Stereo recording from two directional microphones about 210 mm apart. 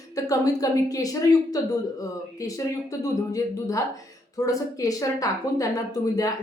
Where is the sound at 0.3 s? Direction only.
15° left (ahead or behind).